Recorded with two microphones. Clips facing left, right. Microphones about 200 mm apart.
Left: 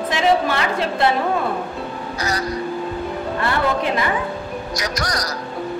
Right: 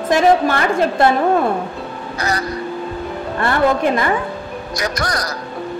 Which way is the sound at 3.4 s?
50° right (ahead or behind).